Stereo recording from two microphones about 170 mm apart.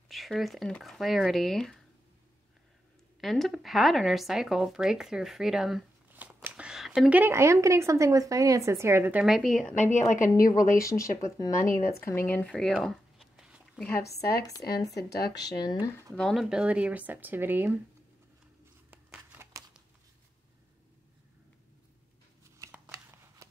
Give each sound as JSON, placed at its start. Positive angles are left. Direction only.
{"t": 0.1, "sound": "speech", "side_deg": 0}
{"t": 3.2, "sound": "speech", "side_deg": 0}
{"t": 9.8, "sound": "a woman's voice", "side_deg": 45}
{"t": 10.9, "sound": "speech", "side_deg": 20}
{"t": 12.0, "sound": "a sound", "side_deg": 15}
{"t": 13.9, "sound": "speech", "side_deg": 70}
{"t": 14.7, "sound": "speech", "side_deg": 20}
{"t": 15.0, "sound": "speech", "side_deg": 75}
{"t": 15.4, "sound": "speech", "side_deg": 25}
{"t": 16.2, "sound": "speech", "side_deg": 0}
{"t": 19.3, "sound": "crumpling", "side_deg": -15}
{"t": 22.6, "sound": "scissors", "side_deg": -15}